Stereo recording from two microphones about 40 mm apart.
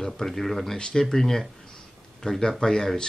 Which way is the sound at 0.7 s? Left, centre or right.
Left.